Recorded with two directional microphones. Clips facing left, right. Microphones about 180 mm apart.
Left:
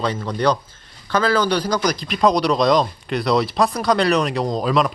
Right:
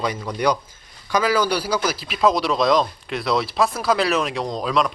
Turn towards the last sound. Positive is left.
turn(degrees=0)  # may be behind; listen again after turning